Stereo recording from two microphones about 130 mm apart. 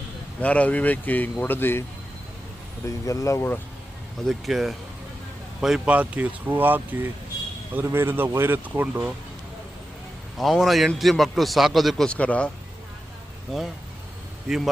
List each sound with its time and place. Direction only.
0.4 s speech: 10° left (ahead or behind)
2.8 s speech: 25° left (ahead or behind)
4.3 s a man's voice: centre (ahead or behind)
10.3 s a man's voice: centre (ahead or behind)
13.5 s a man's voice: centre (ahead or behind)